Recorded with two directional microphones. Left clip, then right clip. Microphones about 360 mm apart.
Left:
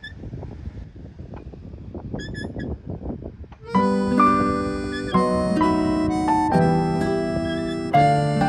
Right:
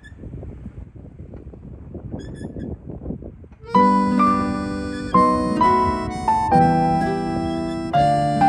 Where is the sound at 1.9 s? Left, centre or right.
Centre.